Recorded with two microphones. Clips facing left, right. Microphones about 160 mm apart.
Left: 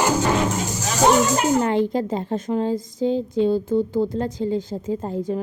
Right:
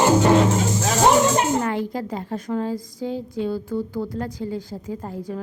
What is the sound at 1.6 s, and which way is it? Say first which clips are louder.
A woman's voice: left 4 dB; 25° left (ahead or behind).